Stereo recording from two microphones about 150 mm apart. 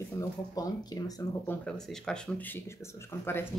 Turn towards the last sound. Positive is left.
turn(degrees=15)  # may be behind; listen again after turning